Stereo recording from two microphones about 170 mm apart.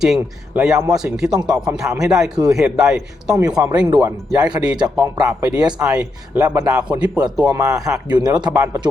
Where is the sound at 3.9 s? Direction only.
20° right (ahead or behind).